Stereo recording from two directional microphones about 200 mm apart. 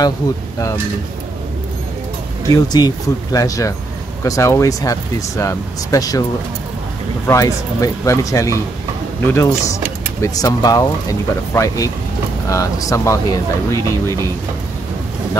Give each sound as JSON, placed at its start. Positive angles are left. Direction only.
{"t": 2.5, "sound": "speech", "side_deg": 20}
{"t": 7.2, "sound": "speech", "side_deg": 15}